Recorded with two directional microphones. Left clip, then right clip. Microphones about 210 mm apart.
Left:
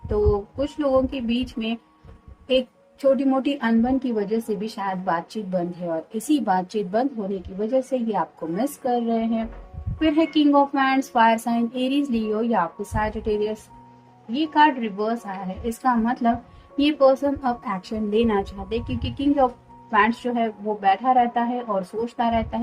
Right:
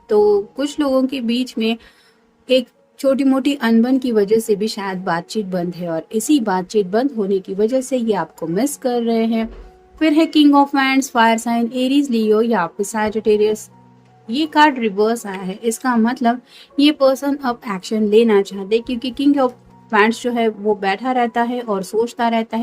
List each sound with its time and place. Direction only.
0.1 s a woman's voice: 40° right (ahead or behind)